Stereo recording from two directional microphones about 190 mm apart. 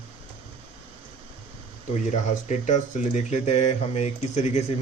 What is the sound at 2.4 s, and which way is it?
A man's voice, 40° left (ahead or behind).